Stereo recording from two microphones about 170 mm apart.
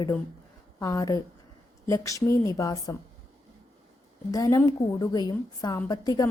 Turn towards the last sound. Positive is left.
turn(degrees=20)  # may be behind; listen again after turning